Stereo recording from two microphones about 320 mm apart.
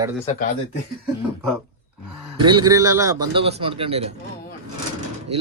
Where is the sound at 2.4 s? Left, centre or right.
Centre.